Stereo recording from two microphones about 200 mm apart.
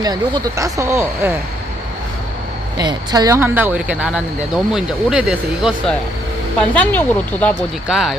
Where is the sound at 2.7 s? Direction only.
20° right (ahead or behind).